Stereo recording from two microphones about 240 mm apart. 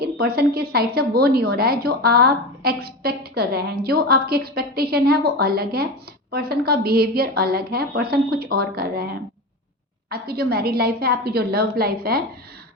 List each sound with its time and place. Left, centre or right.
0.0 s a woman's voice: right
10.1 s a woman's voice: right